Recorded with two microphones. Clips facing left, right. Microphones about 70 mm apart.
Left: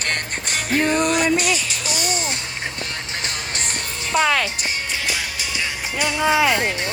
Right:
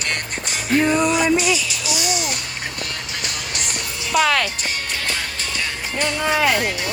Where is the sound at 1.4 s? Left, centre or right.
Left.